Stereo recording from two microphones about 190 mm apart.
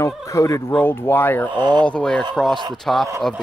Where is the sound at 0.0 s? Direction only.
15° left (ahead or behind).